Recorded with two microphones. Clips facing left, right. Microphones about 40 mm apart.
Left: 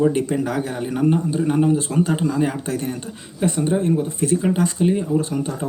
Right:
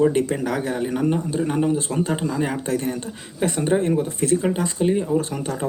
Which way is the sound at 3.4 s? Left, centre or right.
Centre.